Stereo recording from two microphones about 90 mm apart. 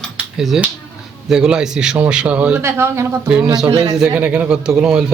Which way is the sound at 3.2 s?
10° right (ahead or behind).